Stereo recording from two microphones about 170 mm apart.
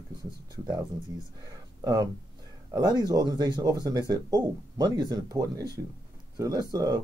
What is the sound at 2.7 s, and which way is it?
Speech, 25° right (ahead or behind).